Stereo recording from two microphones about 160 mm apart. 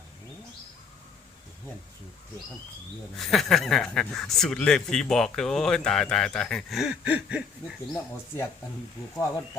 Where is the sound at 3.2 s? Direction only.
Centre (ahead or behind).